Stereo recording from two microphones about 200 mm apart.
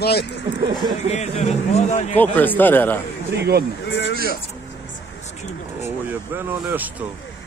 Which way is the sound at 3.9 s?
55° left (ahead or behind).